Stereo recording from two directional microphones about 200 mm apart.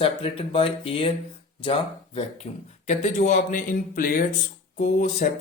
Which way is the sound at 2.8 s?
35° left (ahead or behind).